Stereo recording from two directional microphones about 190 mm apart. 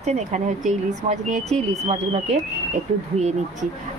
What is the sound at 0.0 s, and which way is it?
Speech, 35° right (ahead or behind).